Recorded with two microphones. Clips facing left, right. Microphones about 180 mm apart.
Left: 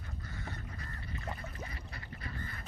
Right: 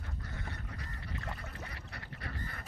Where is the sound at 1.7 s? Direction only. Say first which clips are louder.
Even; 70° right (ahead or behind).